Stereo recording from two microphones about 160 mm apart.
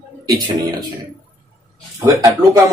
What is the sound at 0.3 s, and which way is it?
Speech, 25° right (ahead or behind).